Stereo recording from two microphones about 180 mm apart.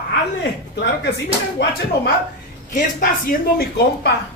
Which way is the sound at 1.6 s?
75° left (ahead or behind).